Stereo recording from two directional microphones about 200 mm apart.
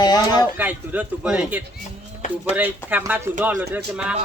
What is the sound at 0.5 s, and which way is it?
A man's voice, 10° right (ahead or behind).